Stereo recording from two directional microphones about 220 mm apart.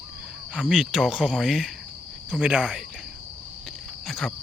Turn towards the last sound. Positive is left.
turn(degrees=0)  # may be behind; listen again after turning